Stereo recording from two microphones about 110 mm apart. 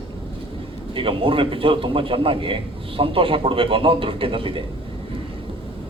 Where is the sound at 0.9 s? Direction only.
55° right (ahead or behind).